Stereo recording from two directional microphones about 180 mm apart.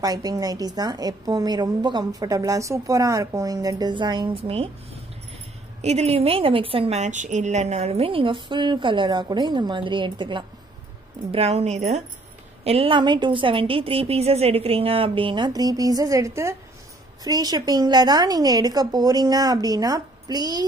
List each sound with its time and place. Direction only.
0.0 s a woman's voice: 20° right (ahead or behind)
5.8 s a woman's voice: 35° right (ahead or behind); by 20.6 s 20° right (ahead or behind)